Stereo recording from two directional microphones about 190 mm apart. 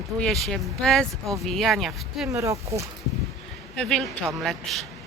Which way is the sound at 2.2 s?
15° right (ahead or behind).